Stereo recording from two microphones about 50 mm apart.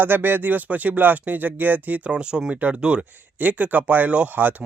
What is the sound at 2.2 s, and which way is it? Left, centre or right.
Speech, centre.